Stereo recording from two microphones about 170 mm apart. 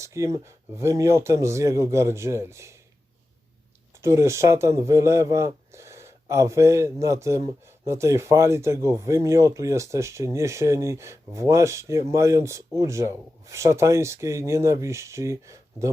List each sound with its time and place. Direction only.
0.0 s a man's voice: 20° right (ahead or behind)
3.9 s a man's voice: 15° right (ahead or behind)